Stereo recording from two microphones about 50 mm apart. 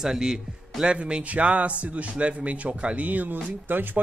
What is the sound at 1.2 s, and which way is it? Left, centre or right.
Speech, right.